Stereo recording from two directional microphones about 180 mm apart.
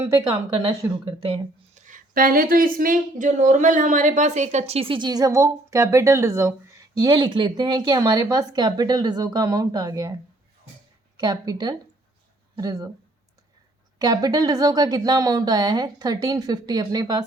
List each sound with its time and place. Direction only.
0.2 s speech: 30° right (ahead or behind)
0.7 s speech: 15° right (ahead or behind)
1.2 s speech: 30° right (ahead or behind)
1.9 s speech: 50° right (ahead or behind); by 10.2 s 20° right (ahead or behind)
11.2 s speech: 20° right (ahead or behind)
14.0 s speech: 20° right (ahead or behind)